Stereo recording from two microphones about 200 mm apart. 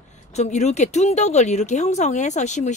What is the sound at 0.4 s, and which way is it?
Speech, 35° left (ahead or behind).